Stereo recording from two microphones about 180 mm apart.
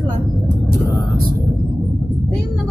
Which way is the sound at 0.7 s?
55° right (ahead or behind).